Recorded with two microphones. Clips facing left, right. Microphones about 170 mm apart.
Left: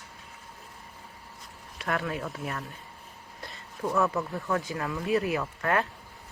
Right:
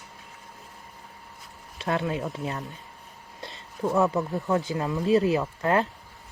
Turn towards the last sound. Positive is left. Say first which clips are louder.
# right 4 dB
turn(degrees=-25)  # may be behind; listen again after turning